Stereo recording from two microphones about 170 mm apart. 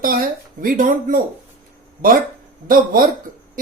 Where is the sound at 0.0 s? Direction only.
55° right (ahead or behind).